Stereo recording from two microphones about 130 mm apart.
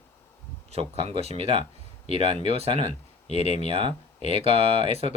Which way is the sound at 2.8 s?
60° left (ahead or behind).